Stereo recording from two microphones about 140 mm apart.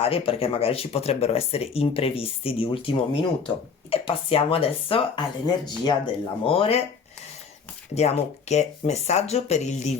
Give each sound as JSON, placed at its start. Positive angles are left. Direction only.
{"t": 0.0, "sound": "speech", "side_deg": 45}
{"t": 7.9, "sound": "speech", "side_deg": 50}